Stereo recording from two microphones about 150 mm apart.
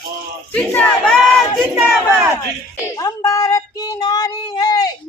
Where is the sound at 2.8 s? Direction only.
25° left (ahead or behind).